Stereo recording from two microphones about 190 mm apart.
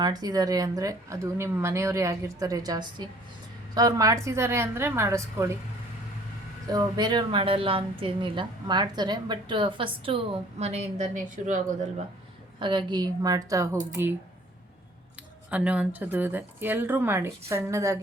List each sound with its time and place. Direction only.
0.0 s speech: 20° right (ahead or behind)
6.7 s a woman's voice: 20° right (ahead or behind); by 11.9 s 40° right (ahead or behind)
12.5 s speech: 25° right (ahead or behind)
15.4 s speech: 5° right (ahead or behind)